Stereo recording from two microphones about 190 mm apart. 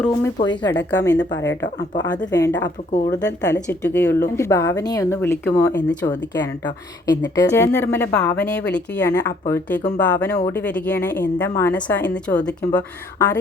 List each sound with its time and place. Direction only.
0.3 s speech: 25° left (ahead or behind)
1.0 s speech: 5° left (ahead or behind)